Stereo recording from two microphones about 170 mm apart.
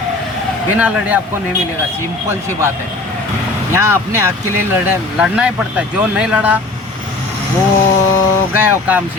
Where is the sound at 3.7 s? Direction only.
15° right (ahead or behind).